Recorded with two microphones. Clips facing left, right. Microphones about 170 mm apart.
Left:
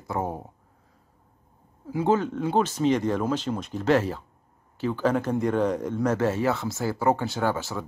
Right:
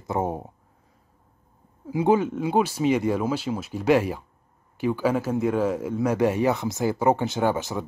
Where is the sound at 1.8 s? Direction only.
15° right (ahead or behind).